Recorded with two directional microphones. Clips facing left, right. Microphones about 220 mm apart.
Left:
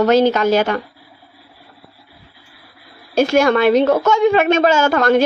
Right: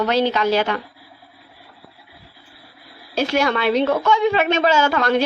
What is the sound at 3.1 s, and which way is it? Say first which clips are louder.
A woman's voice: left 6 dB; 45° left (ahead or behind).